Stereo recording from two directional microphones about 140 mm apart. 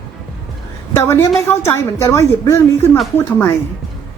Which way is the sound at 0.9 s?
20° left (ahead or behind).